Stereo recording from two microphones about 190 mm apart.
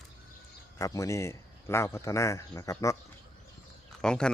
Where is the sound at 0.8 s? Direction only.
15° left (ahead or behind).